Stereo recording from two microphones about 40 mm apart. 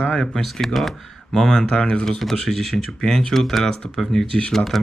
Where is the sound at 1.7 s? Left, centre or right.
Left.